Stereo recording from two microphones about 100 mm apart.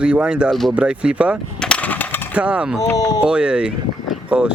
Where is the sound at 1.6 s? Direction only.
10° left (ahead or behind).